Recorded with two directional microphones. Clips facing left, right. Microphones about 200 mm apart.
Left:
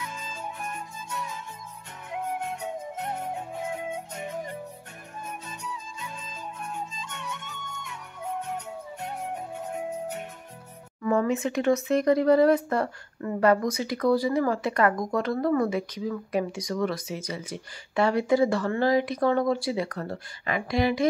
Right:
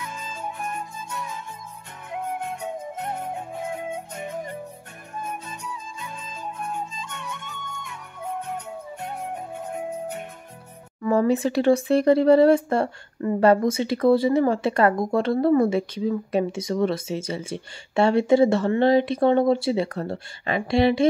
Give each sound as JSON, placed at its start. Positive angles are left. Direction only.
{"t": 0.0, "sound": "music", "side_deg": -50}
{"t": 2.0, "sound": "flute", "side_deg": -50}
{"t": 5.2, "sound": "music", "side_deg": -50}
{"t": 11.0, "sound": "speech", "side_deg": -35}